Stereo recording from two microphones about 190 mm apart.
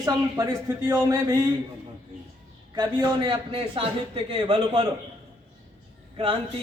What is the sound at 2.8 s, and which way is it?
A man's voice, 25° right (ahead or behind).